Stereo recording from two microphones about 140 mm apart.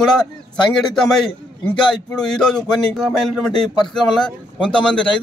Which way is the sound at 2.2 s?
5° left (ahead or behind).